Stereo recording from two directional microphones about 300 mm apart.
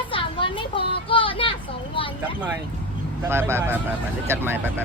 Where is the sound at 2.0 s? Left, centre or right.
Centre.